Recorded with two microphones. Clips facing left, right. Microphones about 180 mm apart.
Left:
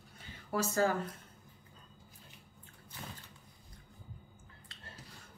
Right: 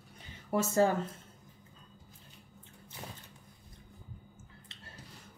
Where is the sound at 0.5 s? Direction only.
25° right (ahead or behind).